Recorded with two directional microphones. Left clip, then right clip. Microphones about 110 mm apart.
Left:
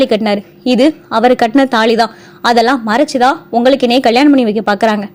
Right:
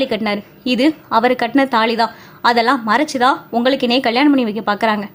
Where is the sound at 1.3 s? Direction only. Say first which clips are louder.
Left 5 dB; 40° left (ahead or behind).